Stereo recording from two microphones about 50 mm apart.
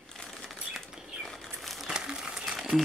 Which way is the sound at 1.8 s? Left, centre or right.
Centre.